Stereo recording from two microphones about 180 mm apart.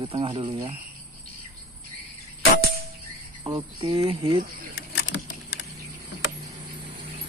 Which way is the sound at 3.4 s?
25° right (ahead or behind).